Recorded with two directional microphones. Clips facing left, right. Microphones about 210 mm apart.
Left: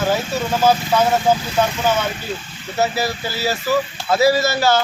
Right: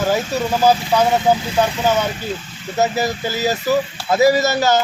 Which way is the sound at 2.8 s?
20° right (ahead or behind).